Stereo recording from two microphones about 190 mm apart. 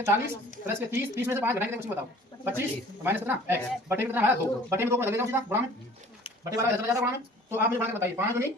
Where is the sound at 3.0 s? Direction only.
10° right (ahead or behind).